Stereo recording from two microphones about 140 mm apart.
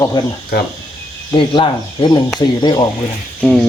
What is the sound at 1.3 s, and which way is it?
Speech, 35° left (ahead or behind).